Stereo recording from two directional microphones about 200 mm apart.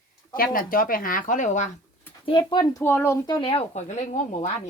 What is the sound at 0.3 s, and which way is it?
Speech, 45° left (ahead or behind).